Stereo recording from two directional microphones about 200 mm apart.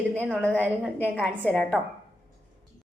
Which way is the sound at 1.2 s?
5° left (ahead or behind).